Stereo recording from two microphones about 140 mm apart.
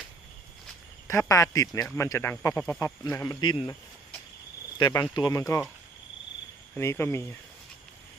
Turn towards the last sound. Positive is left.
turn(degrees=20)  # may be behind; listen again after turning